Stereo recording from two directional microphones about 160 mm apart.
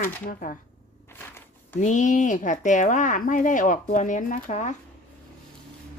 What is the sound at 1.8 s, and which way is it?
Speech, 50° left (ahead or behind).